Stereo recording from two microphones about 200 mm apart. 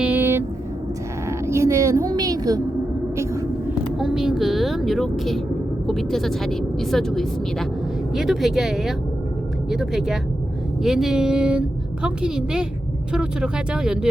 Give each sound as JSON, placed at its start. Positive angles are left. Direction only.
{"t": 0.0, "sound": "a sound", "side_deg": -10}
{"t": 1.5, "sound": "a woman's voice", "side_deg": -15}
{"t": 3.9, "sound": "vehicle", "side_deg": 0}
{"t": 5.9, "sound": "speech", "side_deg": 0}